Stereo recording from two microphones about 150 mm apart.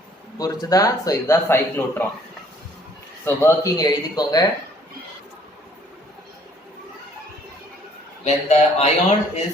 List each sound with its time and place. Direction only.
0.3 s speech: 25° left (ahead or behind)
3.2 s speech: 20° left (ahead or behind)
8.2 s speech: 45° left (ahead or behind)